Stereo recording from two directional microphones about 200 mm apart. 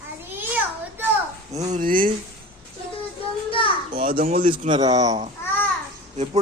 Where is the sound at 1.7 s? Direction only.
45° right (ahead or behind).